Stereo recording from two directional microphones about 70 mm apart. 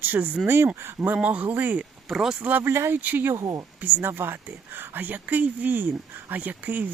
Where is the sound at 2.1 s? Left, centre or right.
Centre.